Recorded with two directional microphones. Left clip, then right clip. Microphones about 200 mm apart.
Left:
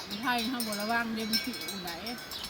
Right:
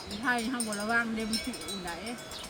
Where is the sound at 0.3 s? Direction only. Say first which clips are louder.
Right 1 dB; 10° left (ahead or behind).